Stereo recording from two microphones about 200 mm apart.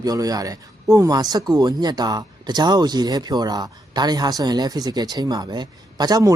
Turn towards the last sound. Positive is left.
turn(degrees=-20)  # may be behind; listen again after turning